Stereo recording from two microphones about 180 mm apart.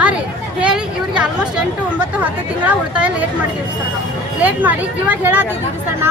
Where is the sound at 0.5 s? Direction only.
5° right (ahead or behind).